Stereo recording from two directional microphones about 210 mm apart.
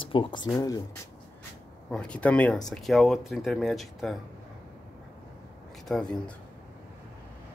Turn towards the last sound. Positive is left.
turn(degrees=0)  # may be behind; listen again after turning